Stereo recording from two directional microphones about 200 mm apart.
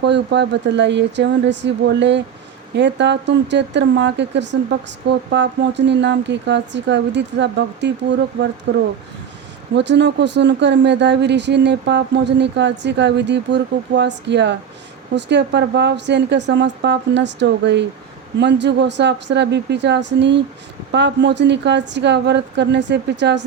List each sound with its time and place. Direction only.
0.0 s speech: 60° right (ahead or behind)
9.7 s speech: 60° right (ahead or behind)